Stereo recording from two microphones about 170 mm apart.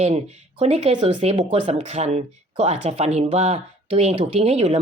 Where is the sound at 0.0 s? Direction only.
40° right (ahead or behind).